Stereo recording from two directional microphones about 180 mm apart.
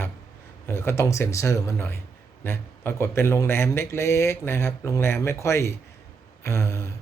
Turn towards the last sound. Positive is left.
turn(degrees=15)  # may be behind; listen again after turning